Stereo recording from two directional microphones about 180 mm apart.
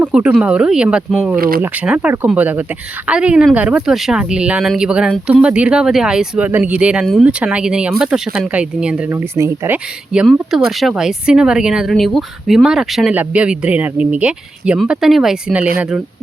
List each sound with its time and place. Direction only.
0.0 s speech: 10° right (ahead or behind)
1.4 s speech: 55° right (ahead or behind)
1.6 s speech: 10° right (ahead or behind)